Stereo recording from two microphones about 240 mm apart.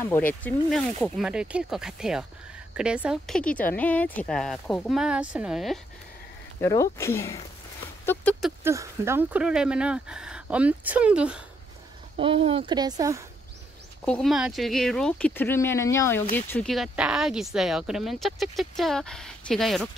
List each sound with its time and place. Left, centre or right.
0.1 s speech: centre
6.6 s speech: centre
12.2 s speech: right
14.0 s speech: centre